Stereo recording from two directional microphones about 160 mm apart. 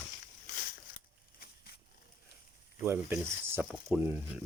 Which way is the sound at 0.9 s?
65° left (ahead or behind).